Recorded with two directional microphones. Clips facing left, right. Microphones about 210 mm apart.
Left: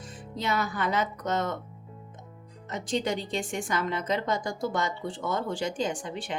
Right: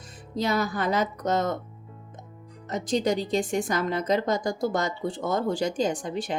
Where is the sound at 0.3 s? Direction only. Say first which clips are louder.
Right 4 dB; 40° right (ahead or behind).